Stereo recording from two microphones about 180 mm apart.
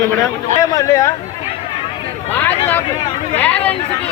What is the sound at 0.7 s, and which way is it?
Speech, 15° left (ahead or behind).